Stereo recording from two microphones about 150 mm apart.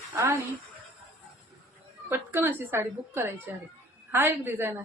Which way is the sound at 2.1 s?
15° right (ahead or behind).